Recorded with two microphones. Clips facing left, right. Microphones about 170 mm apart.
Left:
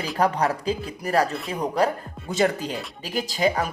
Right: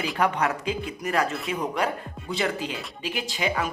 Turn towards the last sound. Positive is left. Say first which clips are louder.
# left 4 dB
turn(degrees=40)  # may be behind; listen again after turning